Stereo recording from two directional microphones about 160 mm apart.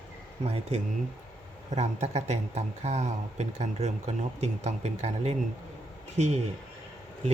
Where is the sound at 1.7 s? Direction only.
45° right (ahead or behind).